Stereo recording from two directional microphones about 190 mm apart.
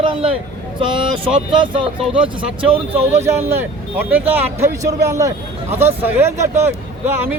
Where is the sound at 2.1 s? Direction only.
30° right (ahead or behind).